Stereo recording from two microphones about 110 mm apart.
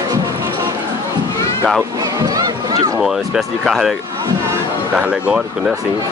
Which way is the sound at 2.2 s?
35° right (ahead or behind).